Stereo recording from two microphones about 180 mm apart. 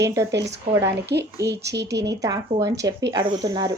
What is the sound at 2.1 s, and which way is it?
Speech, 20° right (ahead or behind).